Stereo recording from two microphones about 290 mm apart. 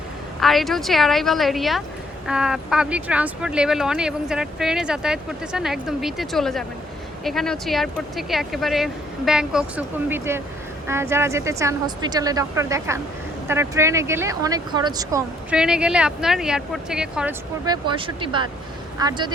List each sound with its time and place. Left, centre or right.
0.3 s speech: centre
17.7 s speech: centre